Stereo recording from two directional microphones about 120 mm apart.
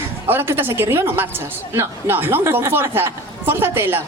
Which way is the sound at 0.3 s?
20° right (ahead or behind).